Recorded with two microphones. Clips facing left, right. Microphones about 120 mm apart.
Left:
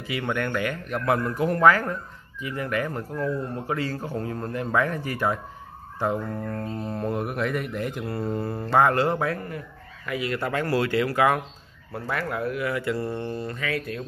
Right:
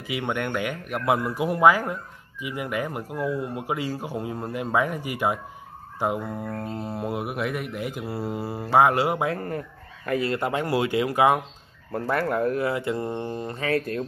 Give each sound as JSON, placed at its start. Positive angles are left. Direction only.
{"t": 0.0, "sound": "speech", "side_deg": -20}
{"t": 10.0, "sound": "speech", "side_deg": -40}
{"t": 10.3, "sound": "speech", "side_deg": -20}
{"t": 11.9, "sound": "speech", "side_deg": -45}
{"t": 12.6, "sound": "speech", "side_deg": -25}
{"t": 13.6, "sound": "speech", "side_deg": -40}